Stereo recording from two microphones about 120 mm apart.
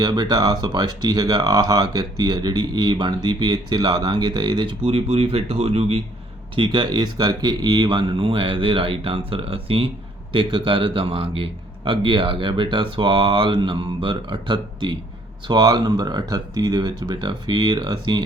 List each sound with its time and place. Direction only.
0.0 s speech: 40° right (ahead or behind); by 6.0 s 55° right (ahead or behind)
6.6 s speech: 40° right (ahead or behind)